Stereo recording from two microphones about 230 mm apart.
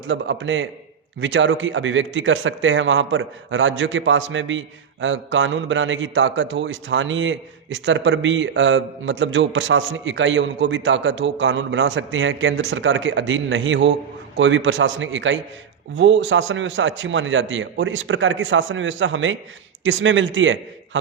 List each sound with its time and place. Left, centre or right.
0.1 s a man's voice: right